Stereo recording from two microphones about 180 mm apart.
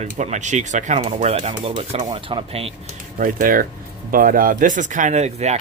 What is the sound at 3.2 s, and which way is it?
Speech, 50° right (ahead or behind).